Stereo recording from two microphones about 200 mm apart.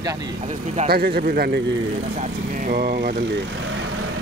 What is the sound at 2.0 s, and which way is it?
Speech, 40° right (ahead or behind).